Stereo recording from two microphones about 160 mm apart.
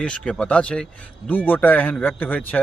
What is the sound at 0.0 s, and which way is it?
Speech, 5° left (ahead or behind).